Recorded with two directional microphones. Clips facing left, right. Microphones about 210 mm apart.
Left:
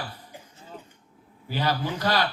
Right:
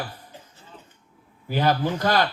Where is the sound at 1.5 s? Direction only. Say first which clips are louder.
Right 5 dB; 50° right (ahead or behind).